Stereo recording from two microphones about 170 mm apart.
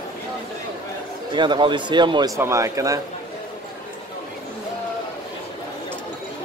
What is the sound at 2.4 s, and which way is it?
Speech, 15° right (ahead or behind).